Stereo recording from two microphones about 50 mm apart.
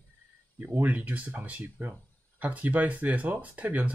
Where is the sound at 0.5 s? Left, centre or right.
Right.